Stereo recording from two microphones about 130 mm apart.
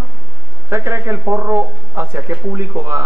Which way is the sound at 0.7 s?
20° right (ahead or behind).